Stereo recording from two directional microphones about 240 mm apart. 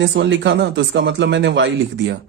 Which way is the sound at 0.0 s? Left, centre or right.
Right.